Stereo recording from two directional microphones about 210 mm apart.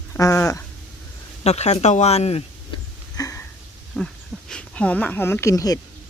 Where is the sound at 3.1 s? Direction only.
15° left (ahead or behind).